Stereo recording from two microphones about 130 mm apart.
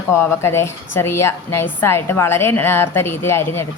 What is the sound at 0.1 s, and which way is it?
A woman's voice, 20° left (ahead or behind).